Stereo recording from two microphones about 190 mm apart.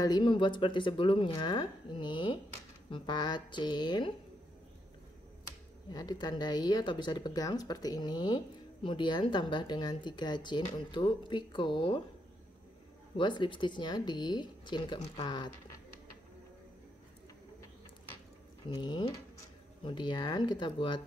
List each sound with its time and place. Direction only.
0.0 s speech: 25° left (ahead or behind)
5.9 s speech: 20° left (ahead or behind)
13.1 s speech: 25° left (ahead or behind)
18.7 s speech: 20° left (ahead or behind)